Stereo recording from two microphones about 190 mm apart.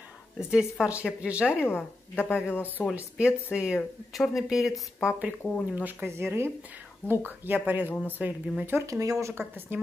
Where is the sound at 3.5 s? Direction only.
5° right (ahead or behind).